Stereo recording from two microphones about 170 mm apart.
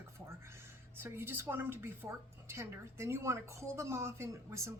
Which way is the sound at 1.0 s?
15° right (ahead or behind).